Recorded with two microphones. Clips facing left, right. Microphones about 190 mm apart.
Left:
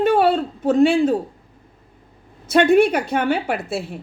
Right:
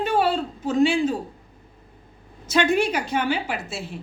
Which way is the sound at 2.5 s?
55° left (ahead or behind).